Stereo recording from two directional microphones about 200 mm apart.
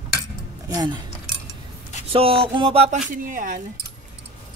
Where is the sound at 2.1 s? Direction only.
30° right (ahead or behind).